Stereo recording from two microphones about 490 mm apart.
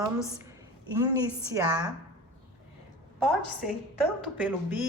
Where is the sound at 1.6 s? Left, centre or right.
Centre.